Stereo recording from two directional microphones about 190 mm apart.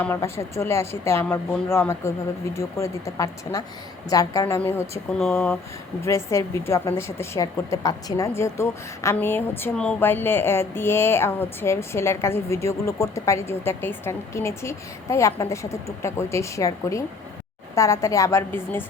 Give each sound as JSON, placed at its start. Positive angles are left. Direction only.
{"t": 0.0, "sound": "a woman's voice", "side_deg": 15}